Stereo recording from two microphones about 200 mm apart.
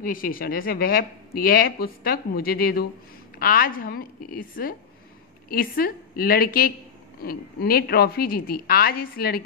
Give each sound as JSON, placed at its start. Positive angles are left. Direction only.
{"t": 0.0, "sound": "speech", "side_deg": 45}